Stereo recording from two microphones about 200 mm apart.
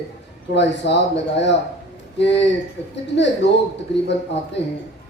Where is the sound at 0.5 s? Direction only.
60° left (ahead or behind).